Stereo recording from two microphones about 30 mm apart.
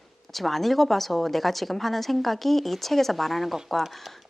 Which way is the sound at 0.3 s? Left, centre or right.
Centre.